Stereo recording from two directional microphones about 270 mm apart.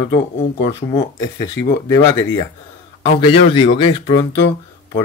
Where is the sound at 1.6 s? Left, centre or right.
Left.